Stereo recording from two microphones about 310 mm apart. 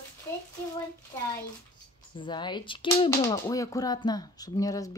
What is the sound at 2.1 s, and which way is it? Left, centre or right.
Speech, centre.